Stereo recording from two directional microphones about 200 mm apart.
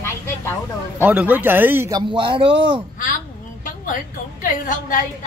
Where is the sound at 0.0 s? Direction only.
10° left (ahead or behind).